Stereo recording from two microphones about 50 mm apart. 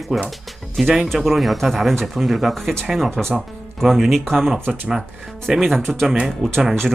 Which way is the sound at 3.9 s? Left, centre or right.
Centre.